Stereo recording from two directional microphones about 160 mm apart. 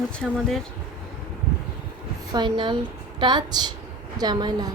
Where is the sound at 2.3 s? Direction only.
30° right (ahead or behind).